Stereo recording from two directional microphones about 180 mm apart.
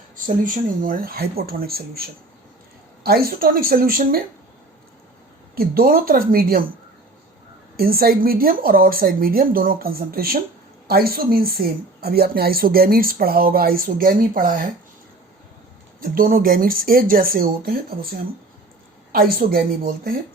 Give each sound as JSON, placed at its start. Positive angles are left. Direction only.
{"t": 0.4, "sound": "a woman's voice", "side_deg": -50}
{"t": 5.5, "sound": "speech", "side_deg": -55}
{"t": 7.8, "sound": "a woman's voice", "side_deg": -55}
{"t": 16.0, "sound": "speech", "side_deg": -55}
{"t": 19.1, "sound": "a woman's voice", "side_deg": -55}